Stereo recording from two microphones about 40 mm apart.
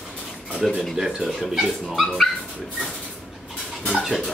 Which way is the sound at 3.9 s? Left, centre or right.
Centre.